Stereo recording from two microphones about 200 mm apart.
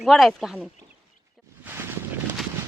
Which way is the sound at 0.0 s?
Centre (ahead or behind).